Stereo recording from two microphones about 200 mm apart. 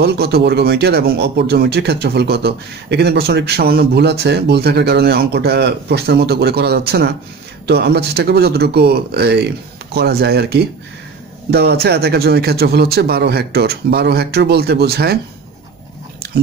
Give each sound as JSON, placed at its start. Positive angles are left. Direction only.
{"t": 0.0, "sound": "speech", "side_deg": -55}